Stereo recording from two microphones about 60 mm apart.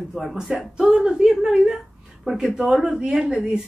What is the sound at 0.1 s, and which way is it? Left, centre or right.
A woman's voice, centre.